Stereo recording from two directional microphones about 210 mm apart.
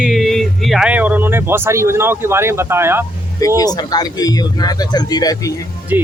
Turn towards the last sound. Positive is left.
turn(degrees=-10)  # may be behind; listen again after turning